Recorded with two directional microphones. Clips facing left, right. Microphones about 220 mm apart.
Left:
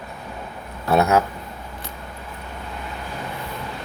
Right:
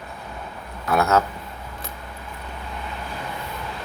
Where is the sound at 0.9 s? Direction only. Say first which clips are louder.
Left 2 dB; 15° left (ahead or behind).